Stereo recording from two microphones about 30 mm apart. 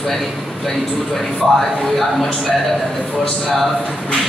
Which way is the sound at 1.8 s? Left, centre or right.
Centre.